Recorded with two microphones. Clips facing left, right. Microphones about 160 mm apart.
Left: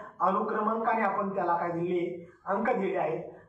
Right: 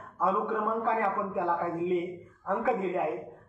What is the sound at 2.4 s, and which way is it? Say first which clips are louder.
Speech: even; centre (ahead or behind).